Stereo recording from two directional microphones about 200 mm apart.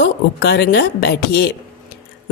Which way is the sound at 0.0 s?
55° left (ahead or behind).